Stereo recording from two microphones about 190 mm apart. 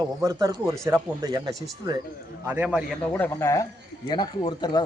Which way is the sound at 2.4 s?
10° right (ahead or behind).